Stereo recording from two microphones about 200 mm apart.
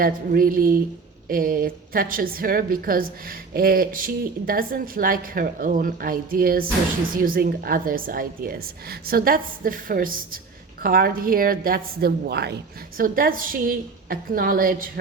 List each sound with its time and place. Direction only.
0.0 s a woman's voice: 45° right (ahead or behind)